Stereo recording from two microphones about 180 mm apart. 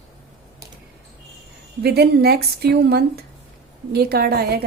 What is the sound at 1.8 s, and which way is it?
A woman's voice, 60° right (ahead or behind).